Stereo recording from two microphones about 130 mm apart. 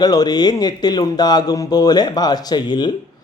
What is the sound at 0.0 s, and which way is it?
Speech, 30° left (ahead or behind).